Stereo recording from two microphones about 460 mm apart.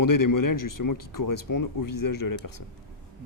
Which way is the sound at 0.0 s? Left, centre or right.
Left.